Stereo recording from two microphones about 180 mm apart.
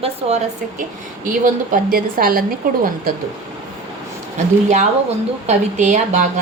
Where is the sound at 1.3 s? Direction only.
50° right (ahead or behind).